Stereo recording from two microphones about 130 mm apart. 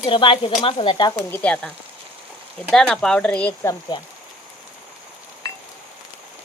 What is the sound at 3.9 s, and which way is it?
Speech, 35° left (ahead or behind).